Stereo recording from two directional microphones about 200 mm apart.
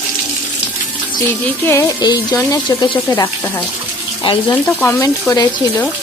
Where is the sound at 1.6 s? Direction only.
15° left (ahead or behind).